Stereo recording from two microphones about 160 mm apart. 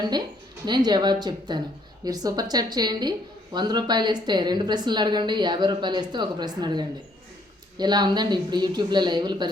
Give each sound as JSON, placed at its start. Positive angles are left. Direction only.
{"t": 0.6, "sound": "a woman's voice", "side_deg": -25}